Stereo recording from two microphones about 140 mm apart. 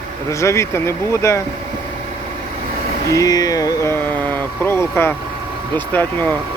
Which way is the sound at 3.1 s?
25° left (ahead or behind).